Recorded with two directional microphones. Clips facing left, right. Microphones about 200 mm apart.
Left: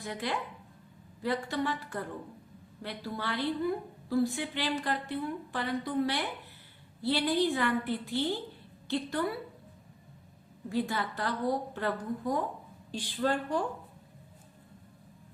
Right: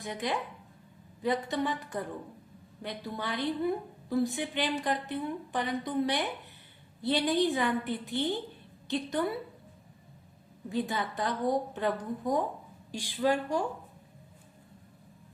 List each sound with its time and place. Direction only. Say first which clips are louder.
0.0 s a woman's voice: right 1 dB; 20° right (ahead or behind)
10.7 s a woman's voice: even; 20° right (ahead or behind)